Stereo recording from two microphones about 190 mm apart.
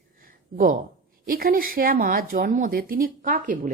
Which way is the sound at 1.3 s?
50° right (ahead or behind).